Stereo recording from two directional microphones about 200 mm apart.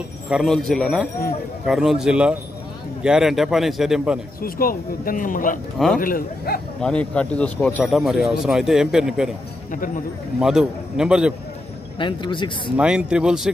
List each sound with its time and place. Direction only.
0.3 s speech: centre (ahead or behind)
4.4 s speech: 45° left (ahead or behind)
6.8 s speech: 5° left (ahead or behind)
10.4 s speech: 5° right (ahead or behind)
12.0 s a man's voice: 25° left (ahead or behind)
12.7 s speech: 5° right (ahead or behind)